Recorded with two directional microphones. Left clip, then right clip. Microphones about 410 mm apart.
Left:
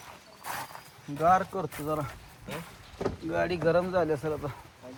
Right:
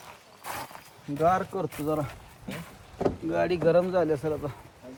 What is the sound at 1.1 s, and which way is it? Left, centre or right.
Speech, centre.